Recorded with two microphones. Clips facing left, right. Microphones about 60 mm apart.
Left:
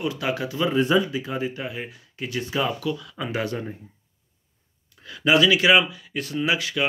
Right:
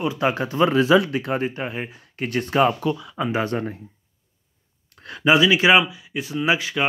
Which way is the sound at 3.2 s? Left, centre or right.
Right.